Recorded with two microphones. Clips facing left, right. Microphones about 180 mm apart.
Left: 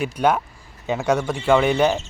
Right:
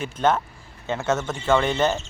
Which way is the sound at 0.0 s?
10° left (ahead or behind).